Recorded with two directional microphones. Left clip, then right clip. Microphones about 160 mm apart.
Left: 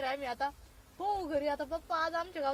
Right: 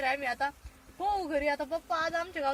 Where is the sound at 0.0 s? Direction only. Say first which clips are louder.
Right 4 dB; 15° left (ahead or behind).